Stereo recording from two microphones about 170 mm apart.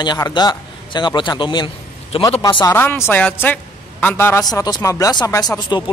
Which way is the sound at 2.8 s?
10° left (ahead or behind).